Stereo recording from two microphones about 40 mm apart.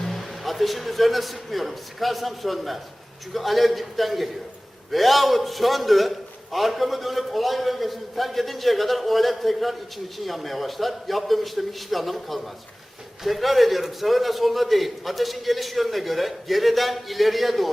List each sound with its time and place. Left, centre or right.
0.0 s a man's voice: centre